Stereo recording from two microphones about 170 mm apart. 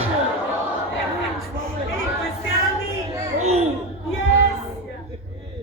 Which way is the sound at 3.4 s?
40° right (ahead or behind).